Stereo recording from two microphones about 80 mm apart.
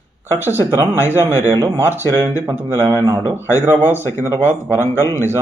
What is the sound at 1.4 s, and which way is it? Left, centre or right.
Speech, right.